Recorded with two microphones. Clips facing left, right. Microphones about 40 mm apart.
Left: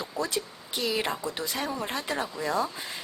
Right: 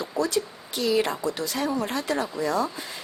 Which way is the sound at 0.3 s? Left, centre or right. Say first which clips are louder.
Right 5 dB; centre.